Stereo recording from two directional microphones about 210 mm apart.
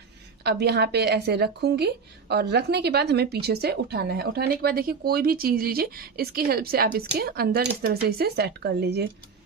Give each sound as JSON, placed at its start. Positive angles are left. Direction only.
{"t": 0.4, "sound": "speech", "side_deg": -50}